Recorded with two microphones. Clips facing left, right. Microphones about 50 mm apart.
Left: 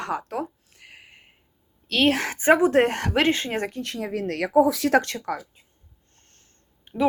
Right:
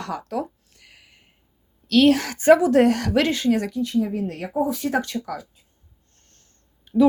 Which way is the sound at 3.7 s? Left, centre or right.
Left.